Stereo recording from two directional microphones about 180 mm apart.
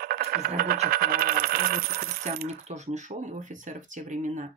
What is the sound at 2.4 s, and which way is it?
Speech, 40° right (ahead or behind).